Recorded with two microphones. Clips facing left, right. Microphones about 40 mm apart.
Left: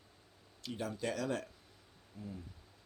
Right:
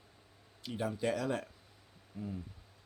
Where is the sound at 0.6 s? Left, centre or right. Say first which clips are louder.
Right 4 dB; centre.